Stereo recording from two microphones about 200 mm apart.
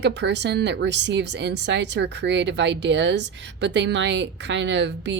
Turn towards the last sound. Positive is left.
turn(degrees=-60)  # may be behind; listen again after turning